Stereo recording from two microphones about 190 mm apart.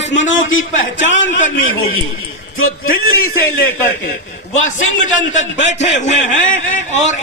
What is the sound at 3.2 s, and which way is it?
Speech, 90° left.